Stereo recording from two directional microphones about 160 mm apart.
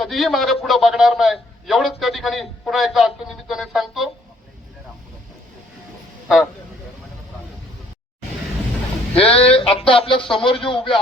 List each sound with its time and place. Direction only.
0.0 s a man's voice: centre (ahead or behind)
6.2 s a man's voice: centre (ahead or behind)
9.2 s speech: 35° left (ahead or behind)